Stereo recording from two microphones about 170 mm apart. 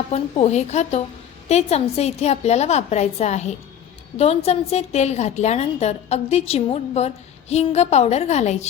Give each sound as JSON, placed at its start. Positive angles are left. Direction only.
{"t": 0.1, "sound": "a woman's voice", "side_deg": 40}